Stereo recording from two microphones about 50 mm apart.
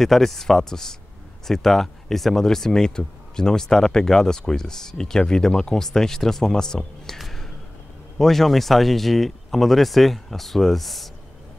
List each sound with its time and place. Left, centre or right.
0.0 s speech: centre
7.2 s a sound: centre
8.2 s speech: centre